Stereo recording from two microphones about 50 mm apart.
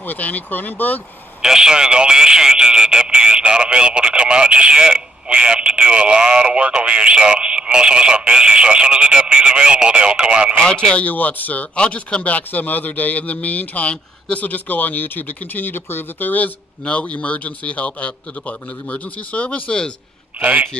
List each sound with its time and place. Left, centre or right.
0.0 s a man's voice: left
1.4 s speech: centre
10.6 s speech: centre
11.0 s a man's voice: left
11.7 s a man's voice: left
16.8 s a man's voice: left
20.3 s a man's voice: right